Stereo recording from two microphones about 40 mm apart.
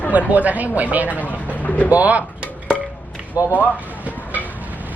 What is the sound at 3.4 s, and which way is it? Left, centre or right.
Speech, right.